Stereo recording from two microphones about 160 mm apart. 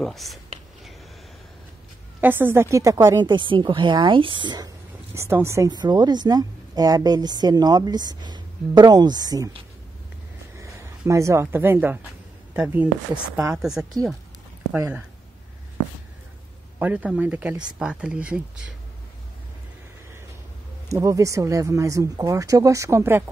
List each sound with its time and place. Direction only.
0.0 s speech: centre (ahead or behind)
2.2 s a woman's voice: 15° right (ahead or behind); by 4.6 s 30° right (ahead or behind)
5.1 s a woman's voice: 15° right (ahead or behind)
10.6 s speech: 20° right (ahead or behind)
16.7 s speech: 10° right (ahead or behind)
20.9 s a woman's voice: 20° right (ahead or behind)